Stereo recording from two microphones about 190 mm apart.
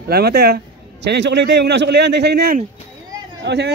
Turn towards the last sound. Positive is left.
turn(degrees=-65)  # may be behind; listen again after turning